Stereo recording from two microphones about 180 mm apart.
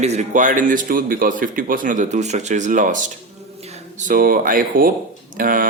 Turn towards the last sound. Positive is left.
turn(degrees=-50)  # may be behind; listen again after turning